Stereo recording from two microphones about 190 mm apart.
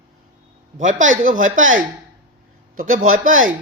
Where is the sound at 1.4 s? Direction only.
90° right.